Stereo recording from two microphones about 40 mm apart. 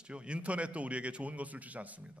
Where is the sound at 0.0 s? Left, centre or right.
Right.